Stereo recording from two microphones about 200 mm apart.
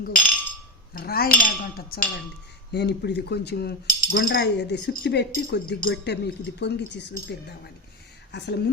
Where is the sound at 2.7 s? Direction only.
55° left (ahead or behind).